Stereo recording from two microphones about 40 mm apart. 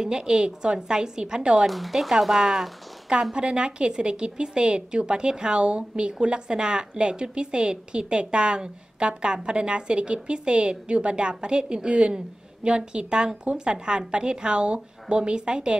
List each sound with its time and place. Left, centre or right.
0.0 s a woman's voice: centre
1.7 s speech: centre
3.3 s a woman's voice: right